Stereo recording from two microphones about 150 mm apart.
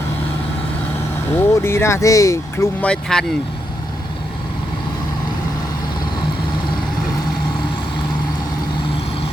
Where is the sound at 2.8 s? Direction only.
5° left (ahead or behind).